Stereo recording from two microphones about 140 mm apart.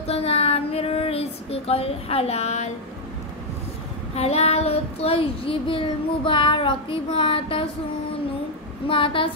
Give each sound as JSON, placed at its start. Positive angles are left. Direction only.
{"t": 0.0, "sound": "child singing", "side_deg": 45}
{"t": 4.1, "sound": "child singing", "side_deg": 50}
{"t": 8.8, "sound": "child singing", "side_deg": 40}